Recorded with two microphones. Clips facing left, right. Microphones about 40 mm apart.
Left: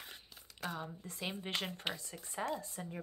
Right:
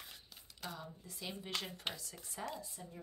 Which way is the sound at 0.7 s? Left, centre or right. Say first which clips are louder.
Left 6 dB; left.